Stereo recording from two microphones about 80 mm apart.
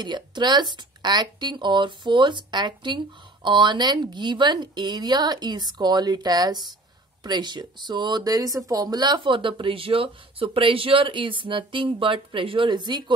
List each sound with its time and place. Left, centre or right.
0.0 s speech: right